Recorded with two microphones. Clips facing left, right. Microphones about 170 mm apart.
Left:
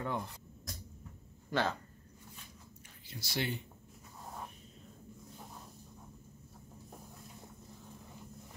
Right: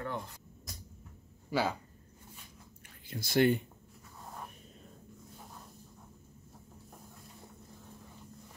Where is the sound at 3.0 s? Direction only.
50° right (ahead or behind).